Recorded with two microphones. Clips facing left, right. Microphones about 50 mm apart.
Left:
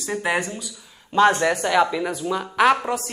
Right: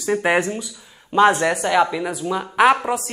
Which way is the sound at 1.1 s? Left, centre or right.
Centre.